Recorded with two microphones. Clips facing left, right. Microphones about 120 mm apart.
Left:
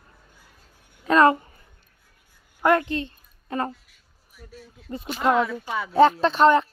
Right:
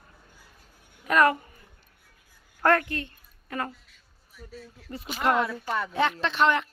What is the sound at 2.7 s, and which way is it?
Speech, 25° left (ahead or behind).